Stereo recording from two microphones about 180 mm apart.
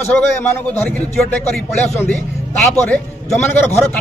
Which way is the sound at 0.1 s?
10° left (ahead or behind).